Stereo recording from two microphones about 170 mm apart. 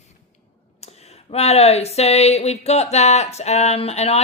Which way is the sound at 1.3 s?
40° left (ahead or behind).